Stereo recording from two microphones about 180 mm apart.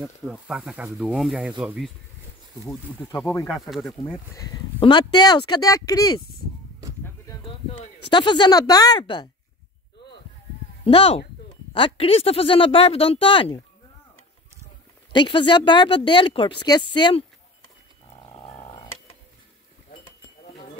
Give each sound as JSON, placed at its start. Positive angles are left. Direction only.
{"t": 0.0, "sound": "speech", "side_deg": 0}
{"t": 3.4, "sound": "speech", "side_deg": 0}
{"t": 4.4, "sound": "a woman's voice", "side_deg": 25}
{"t": 8.1, "sound": "a woman's voice", "side_deg": 25}
{"t": 10.9, "sound": "speech", "side_deg": 35}
{"t": 15.1, "sound": "a woman's voice", "side_deg": 25}
{"t": 18.2, "sound": "a sound", "side_deg": 25}